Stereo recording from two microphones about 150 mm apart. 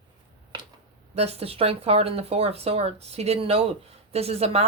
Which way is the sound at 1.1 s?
45° right (ahead or behind).